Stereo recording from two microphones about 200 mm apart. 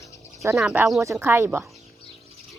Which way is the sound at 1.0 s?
15° right (ahead or behind).